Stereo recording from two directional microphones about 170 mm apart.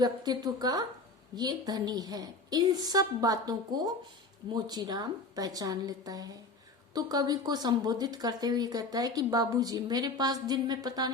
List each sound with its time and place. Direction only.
0.0 s speech: 25° right (ahead or behind)